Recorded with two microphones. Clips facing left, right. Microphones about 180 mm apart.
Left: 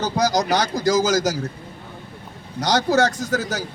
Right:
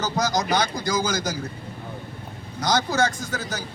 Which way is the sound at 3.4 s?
85° left.